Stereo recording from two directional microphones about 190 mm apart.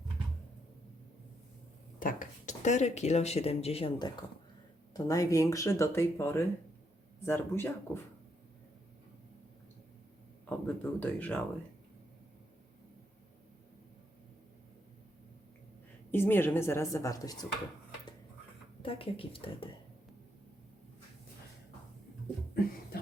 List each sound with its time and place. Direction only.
2.0 s speech: 45° left (ahead or behind); by 8.0 s 10° left (ahead or behind)
10.5 s speech: 10° left (ahead or behind)
16.1 s speech: 10° left (ahead or behind)
18.8 s speech: 30° left (ahead or behind)